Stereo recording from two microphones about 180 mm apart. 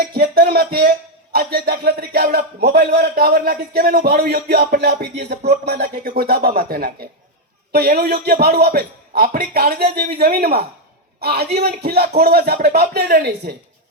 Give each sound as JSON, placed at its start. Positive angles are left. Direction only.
{"t": 0.0, "sound": "speech", "side_deg": -60}